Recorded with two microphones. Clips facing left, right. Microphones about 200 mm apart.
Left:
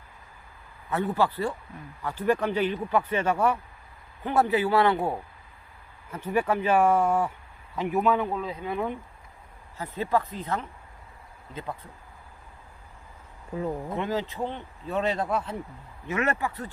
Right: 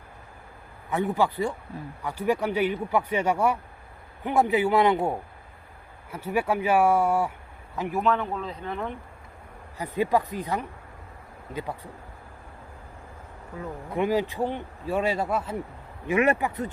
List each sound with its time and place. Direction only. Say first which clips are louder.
0.9 s speech: right 1 dB; 15° right (ahead or behind); by 8.9 s 10° left (ahead or behind)
9.7 s speech: right 3 dB; 15° right (ahead or behind)
13.9 s speech: right 4 dB; 10° right (ahead or behind)